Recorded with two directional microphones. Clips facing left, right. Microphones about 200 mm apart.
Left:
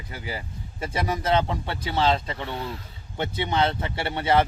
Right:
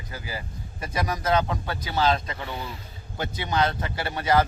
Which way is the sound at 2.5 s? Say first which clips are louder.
Left 3 dB; centre (ahead or behind).